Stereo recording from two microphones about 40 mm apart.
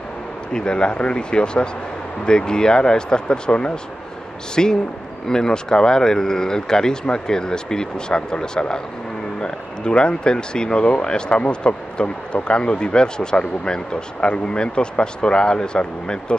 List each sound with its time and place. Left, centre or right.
0.5 s a man's voice: left